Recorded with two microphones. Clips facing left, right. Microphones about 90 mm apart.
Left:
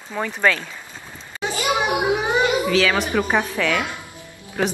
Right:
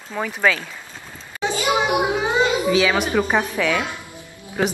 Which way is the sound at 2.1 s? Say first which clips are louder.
Even; 15° left (ahead or behind).